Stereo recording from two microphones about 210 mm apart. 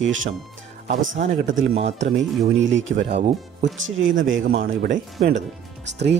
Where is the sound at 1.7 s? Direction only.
30° right (ahead or behind).